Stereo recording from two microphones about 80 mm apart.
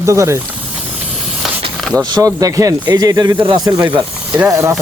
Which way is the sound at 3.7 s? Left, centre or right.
Right.